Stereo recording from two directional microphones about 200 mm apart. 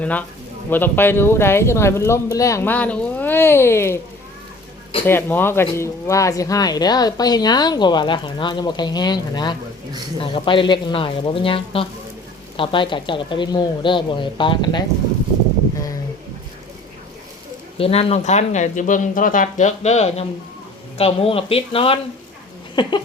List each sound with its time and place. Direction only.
0.0 s speech: 5° left (ahead or behind)
5.0 s speech: 10° left (ahead or behind)
17.7 s speech: 30° left (ahead or behind)